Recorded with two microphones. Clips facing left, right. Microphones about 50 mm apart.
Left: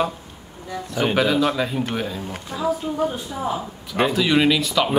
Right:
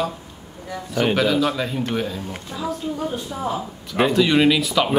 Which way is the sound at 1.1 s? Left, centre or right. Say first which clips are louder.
Left 4 dB; centre.